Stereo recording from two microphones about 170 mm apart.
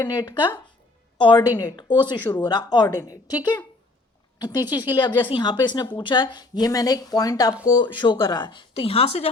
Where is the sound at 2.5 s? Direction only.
25° left (ahead or behind).